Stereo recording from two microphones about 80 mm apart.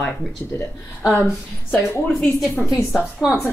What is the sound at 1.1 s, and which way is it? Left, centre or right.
Speech, left.